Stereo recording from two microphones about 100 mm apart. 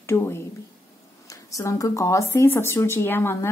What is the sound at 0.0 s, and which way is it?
Speech, 25° left (ahead or behind).